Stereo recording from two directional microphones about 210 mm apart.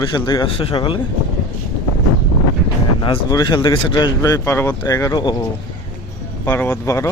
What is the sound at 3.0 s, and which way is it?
Speech, 20° left (ahead or behind).